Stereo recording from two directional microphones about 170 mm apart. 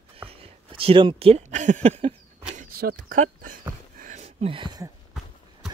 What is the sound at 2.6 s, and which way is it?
Speech, 55° right (ahead or behind).